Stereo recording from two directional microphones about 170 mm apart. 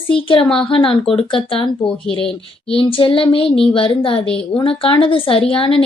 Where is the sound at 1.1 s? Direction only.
35° left (ahead or behind).